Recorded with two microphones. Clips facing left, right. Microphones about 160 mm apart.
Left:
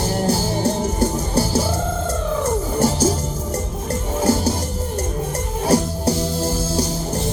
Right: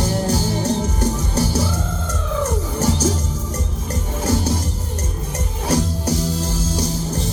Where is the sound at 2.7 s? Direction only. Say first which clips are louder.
Left 2 dB; 30° left (ahead or behind).